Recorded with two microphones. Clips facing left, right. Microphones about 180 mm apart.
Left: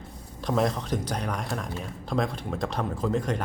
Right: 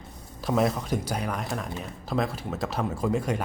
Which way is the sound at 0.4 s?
5° right (ahead or behind).